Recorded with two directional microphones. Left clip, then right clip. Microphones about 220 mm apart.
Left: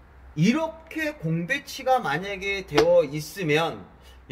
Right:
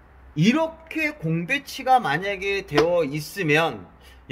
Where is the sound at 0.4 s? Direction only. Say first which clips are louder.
Right 3 dB; 40° right (ahead or behind).